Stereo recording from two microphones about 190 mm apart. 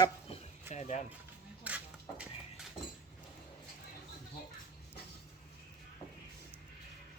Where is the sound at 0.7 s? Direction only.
35° left (ahead or behind).